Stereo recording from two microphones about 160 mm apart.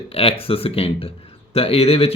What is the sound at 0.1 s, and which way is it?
Speech, 35° left (ahead or behind).